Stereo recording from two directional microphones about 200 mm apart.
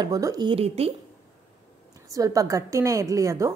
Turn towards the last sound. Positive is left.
turn(degrees=-15)  # may be behind; listen again after turning